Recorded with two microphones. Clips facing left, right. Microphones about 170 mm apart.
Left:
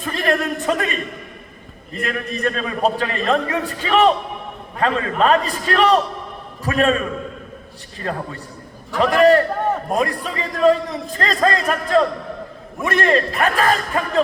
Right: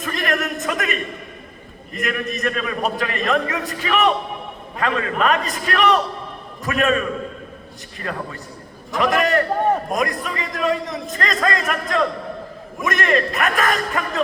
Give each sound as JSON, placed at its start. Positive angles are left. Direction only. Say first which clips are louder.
{"t": 0.0, "sound": "a sound", "louder": "left 3 dB", "side_deg": 30}
{"t": 1.9, "sound": "a man's voice", "louder": "even", "side_deg": 30}
{"t": 8.1, "sound": "a man's voice", "louder": "left 2 dB", "side_deg": 30}